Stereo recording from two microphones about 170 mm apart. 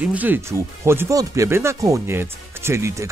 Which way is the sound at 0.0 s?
10° right (ahead or behind).